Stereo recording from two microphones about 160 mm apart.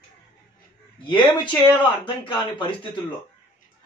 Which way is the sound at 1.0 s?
30° left (ahead or behind).